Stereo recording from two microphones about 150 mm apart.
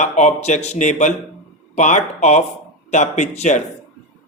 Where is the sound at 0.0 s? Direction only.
50° left (ahead or behind).